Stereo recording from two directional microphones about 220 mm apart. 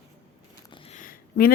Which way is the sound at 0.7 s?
25° left (ahead or behind).